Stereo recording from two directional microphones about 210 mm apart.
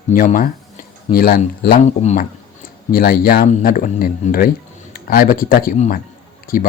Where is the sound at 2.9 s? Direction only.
45° left (ahead or behind).